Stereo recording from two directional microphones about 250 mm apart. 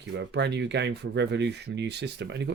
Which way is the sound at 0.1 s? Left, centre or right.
Right.